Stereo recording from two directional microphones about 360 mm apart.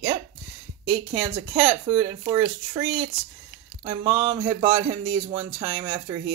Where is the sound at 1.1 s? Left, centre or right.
Centre.